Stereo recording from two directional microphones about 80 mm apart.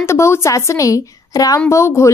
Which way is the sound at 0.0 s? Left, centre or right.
Left.